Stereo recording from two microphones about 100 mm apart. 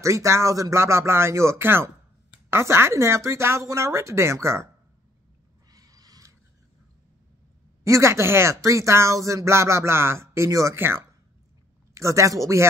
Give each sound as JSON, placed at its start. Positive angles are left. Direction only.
{"t": 0.0, "sound": "speech", "side_deg": -30}
{"t": 5.7, "sound": "a sound", "side_deg": -40}
{"t": 7.8, "sound": "speech", "side_deg": -30}